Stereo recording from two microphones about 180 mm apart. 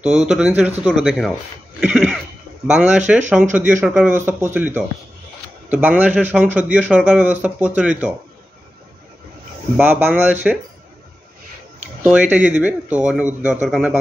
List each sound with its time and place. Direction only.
0.0 s speech: 5° right (ahead or behind)
1.8 s a sound: 10° right (ahead or behind)
2.6 s speech: 5° right (ahead or behind)
9.8 s speech: 10° right (ahead or behind)
12.0 s speech: 10° right (ahead or behind)